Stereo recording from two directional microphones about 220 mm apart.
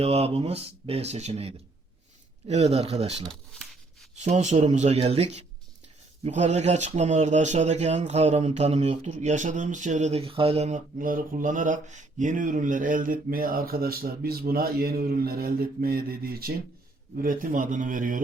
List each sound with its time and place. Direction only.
0.0 s speech: 25° right (ahead or behind)
3.2 s speech: centre (ahead or behind)
4.1 s speech: 30° right (ahead or behind)